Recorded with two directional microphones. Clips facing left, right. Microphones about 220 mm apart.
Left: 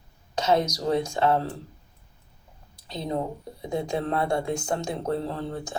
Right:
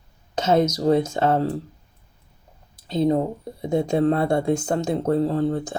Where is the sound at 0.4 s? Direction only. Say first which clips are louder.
Right 5 dB; 45° right (ahead or behind).